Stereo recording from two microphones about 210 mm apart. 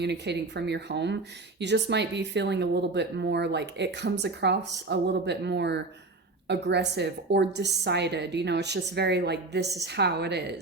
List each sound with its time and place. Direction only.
0.0 s a woman's voice: 55° right (ahead or behind)